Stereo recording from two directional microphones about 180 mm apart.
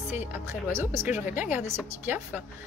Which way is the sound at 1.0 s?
10° right (ahead or behind).